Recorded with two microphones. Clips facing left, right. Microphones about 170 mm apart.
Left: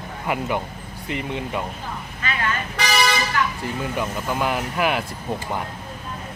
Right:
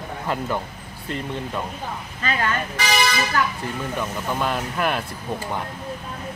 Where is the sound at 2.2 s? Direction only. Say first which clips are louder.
Right 4 dB; 35° right (ahead or behind).